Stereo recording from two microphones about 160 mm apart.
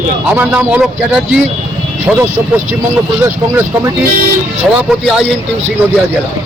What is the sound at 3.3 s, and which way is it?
Speech, 15° right (ahead or behind).